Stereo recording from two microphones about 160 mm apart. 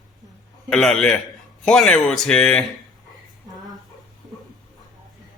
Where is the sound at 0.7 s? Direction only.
5° left (ahead or behind).